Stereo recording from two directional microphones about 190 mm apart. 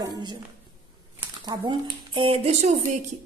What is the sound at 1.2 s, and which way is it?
A woman's voice, 25° right (ahead or behind).